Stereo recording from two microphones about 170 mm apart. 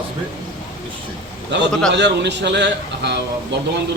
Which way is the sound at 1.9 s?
90° right.